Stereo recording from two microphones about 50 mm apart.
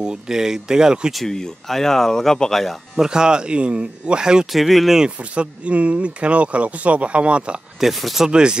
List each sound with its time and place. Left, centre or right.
0.0 s speech: centre
1.1 s speech: centre
3.0 s speech: centre
4.5 s speech: centre
5.3 s speech: right
7.8 s speech: centre
8.3 s speech: centre